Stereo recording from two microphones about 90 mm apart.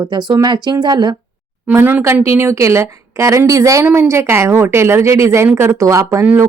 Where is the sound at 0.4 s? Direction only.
55° right (ahead or behind).